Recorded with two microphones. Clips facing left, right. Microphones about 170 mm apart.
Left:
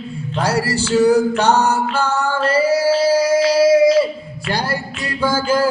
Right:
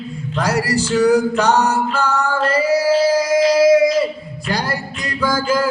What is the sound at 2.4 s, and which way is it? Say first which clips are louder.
Female singing: left 1 dB; 30° left (ahead or behind).